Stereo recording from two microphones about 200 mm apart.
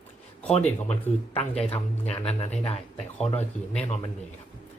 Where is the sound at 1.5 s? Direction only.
5° left (ahead or behind).